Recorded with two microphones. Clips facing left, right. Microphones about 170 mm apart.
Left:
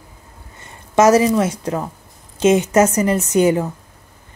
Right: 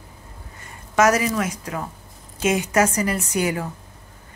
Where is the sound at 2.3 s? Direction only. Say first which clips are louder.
Left 8 dB; 25° left (ahead or behind).